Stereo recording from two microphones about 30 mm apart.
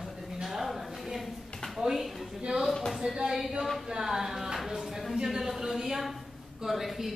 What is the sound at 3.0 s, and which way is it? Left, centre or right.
Speech, right.